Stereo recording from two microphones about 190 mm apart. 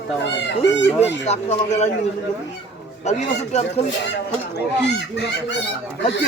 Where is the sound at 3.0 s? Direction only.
35° left (ahead or behind).